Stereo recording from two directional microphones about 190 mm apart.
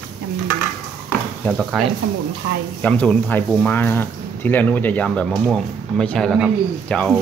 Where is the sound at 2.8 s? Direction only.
5° left (ahead or behind).